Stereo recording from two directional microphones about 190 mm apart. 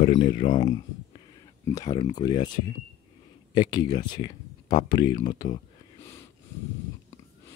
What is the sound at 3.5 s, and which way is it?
Speech, 20° left (ahead or behind).